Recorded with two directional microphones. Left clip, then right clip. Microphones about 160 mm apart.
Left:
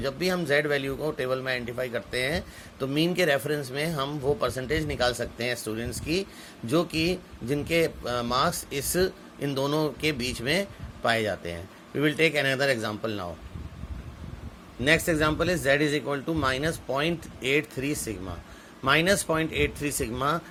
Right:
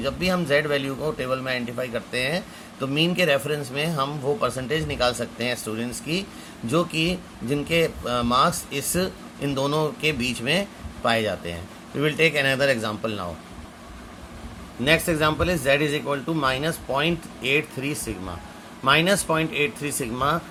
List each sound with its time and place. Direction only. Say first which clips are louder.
0.0 s speech: right 3 dB; 40° left (ahead or behind)
14.8 s speech: right 2 dB; 35° left (ahead or behind)